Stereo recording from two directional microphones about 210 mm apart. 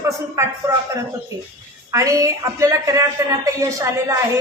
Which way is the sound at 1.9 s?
15° right (ahead or behind).